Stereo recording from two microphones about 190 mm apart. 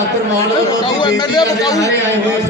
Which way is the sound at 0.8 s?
25° left (ahead or behind).